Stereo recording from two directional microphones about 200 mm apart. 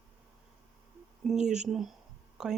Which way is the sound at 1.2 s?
5° right (ahead or behind).